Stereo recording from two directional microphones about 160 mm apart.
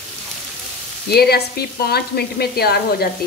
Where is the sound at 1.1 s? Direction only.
85° left.